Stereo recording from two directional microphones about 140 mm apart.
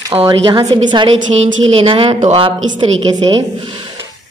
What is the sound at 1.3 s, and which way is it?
A woman's voice, 50° right (ahead or behind).